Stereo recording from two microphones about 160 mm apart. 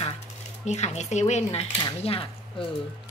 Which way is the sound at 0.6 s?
45° left (ahead or behind).